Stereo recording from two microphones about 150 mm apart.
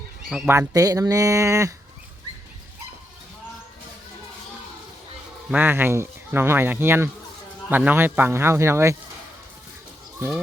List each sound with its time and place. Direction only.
0.4 s speech: 15° right (ahead or behind)
5.5 s speech: 10° right (ahead or behind)